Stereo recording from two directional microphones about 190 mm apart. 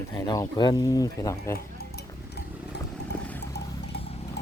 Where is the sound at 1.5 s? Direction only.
55° left (ahead or behind).